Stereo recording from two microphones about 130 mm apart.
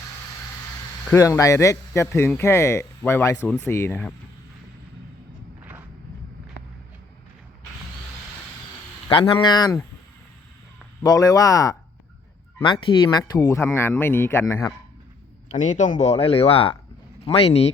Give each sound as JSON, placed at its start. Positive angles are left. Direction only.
{"t": 1.1, "sound": "speech", "side_deg": 25}
{"t": 9.0, "sound": "speech", "side_deg": 40}
{"t": 11.0, "sound": "speech", "side_deg": 30}
{"t": 12.5, "sound": "speech", "side_deg": 40}
{"t": 15.5, "sound": "speech", "side_deg": 70}